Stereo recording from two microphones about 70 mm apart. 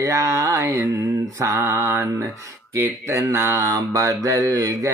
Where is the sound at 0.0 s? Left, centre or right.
Right.